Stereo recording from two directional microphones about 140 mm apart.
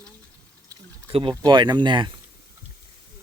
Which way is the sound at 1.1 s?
40° right (ahead or behind).